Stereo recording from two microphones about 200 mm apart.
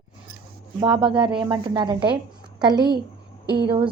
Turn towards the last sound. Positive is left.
turn(degrees=-25)  # may be behind; listen again after turning